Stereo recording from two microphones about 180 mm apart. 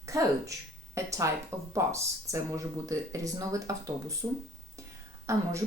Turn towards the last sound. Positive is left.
turn(degrees=-15)  # may be behind; listen again after turning